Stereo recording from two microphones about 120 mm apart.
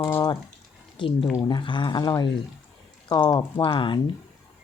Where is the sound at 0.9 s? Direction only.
45° left (ahead or behind).